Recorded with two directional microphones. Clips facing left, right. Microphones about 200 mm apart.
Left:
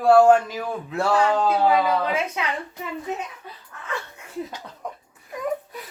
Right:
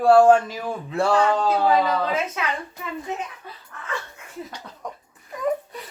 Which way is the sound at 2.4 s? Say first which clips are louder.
Even; 20° left (ahead or behind).